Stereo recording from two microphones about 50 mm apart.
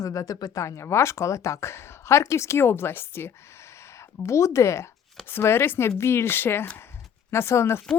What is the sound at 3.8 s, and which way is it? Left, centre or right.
Speech, left.